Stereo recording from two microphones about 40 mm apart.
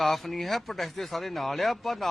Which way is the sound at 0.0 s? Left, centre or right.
Centre.